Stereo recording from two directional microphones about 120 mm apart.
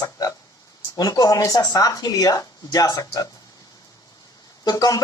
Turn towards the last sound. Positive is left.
turn(degrees=30)  # may be behind; listen again after turning